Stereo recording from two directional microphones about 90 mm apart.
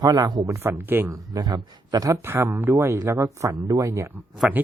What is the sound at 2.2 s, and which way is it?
Speech, 30° right (ahead or behind).